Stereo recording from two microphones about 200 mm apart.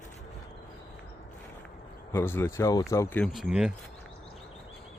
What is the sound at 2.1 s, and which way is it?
Speech, 10° left (ahead or behind).